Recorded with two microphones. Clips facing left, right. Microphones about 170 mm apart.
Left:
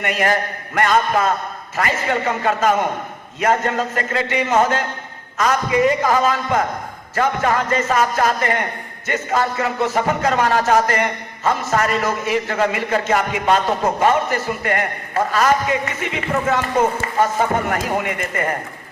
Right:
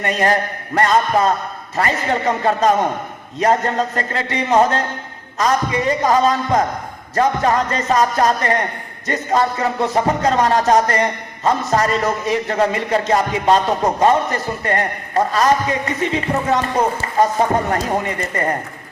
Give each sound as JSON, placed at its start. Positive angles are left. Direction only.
{"t": 0.0, "sound": "a man's voice", "side_deg": -35}